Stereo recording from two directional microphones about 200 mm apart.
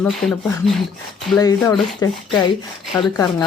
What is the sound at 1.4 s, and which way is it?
Speech, 20° left (ahead or behind).